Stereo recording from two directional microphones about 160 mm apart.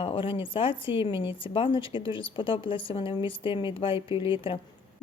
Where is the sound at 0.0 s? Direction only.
35° left (ahead or behind).